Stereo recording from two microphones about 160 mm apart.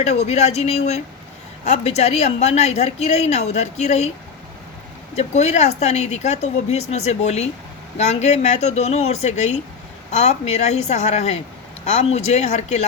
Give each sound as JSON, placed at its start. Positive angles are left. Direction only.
{"t": 0.0, "sound": "a woman's voice", "side_deg": 45}
{"t": 5.1, "sound": "a woman's voice", "side_deg": 45}